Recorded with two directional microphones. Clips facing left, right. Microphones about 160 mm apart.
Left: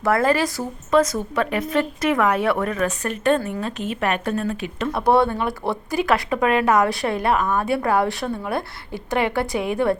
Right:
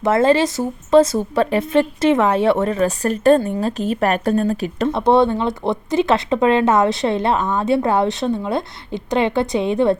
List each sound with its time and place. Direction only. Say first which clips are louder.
0.0 s speech: right 4 dB; 25° right (ahead or behind)
4.9 s speech: right 3 dB; 25° right (ahead or behind)